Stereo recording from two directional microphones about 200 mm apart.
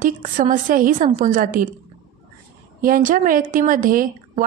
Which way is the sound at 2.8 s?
45° right (ahead or behind).